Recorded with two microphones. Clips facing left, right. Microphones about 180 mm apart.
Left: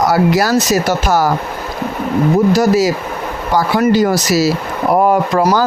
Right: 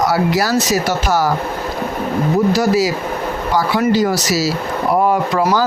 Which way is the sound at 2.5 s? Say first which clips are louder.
Left 3 dB; 45° left (ahead or behind).